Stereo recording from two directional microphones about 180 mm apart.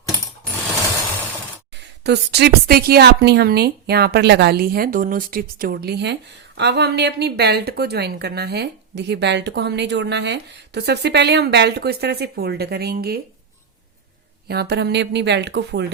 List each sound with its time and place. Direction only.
2.0 s speech: 65° right (ahead or behind)
14.4 s speech: 60° right (ahead or behind)